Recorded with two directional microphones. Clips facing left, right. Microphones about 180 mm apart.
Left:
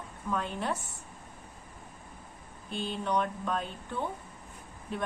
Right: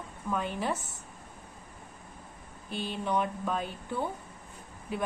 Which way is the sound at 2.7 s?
5° right (ahead or behind).